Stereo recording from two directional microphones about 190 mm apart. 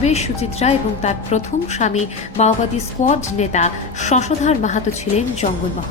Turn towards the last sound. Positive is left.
turn(degrees=35)  # may be behind; listen again after turning